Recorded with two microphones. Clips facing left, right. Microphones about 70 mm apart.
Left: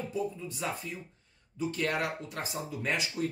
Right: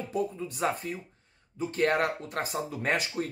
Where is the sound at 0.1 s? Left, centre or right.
Right.